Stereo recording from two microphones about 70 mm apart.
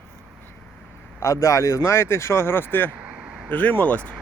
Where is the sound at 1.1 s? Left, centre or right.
Left.